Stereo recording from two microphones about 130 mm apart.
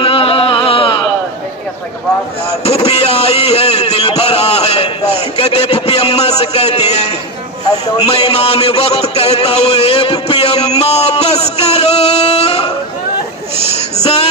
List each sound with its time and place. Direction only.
0.0 s music: 45° left (ahead or behind)
2.6 s a man's voice: 50° left (ahead or behind)
10.2 s music: 50° left (ahead or behind)
13.7 s a sound: 55° left (ahead or behind)